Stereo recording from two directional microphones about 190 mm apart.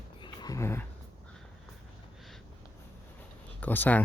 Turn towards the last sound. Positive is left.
turn(degrees=10)  # may be behind; listen again after turning